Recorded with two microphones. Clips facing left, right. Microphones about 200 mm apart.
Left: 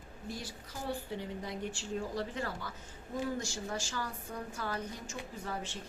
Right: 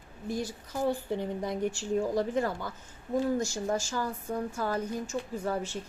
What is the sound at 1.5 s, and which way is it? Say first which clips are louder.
A woman's voice: right 8 dB; 45° right (ahead or behind).